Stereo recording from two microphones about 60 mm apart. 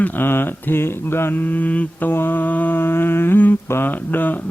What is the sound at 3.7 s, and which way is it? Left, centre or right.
Speech, left.